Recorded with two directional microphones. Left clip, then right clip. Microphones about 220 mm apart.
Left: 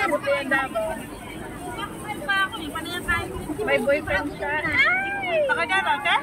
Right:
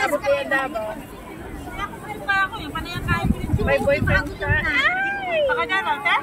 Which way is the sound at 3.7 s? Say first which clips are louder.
Right 2 dB; 35° right (ahead or behind).